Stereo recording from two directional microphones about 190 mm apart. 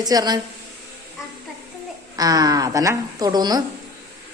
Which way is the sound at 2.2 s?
20° right (ahead or behind).